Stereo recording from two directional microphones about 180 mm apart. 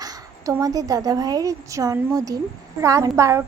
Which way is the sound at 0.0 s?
20° right (ahead or behind).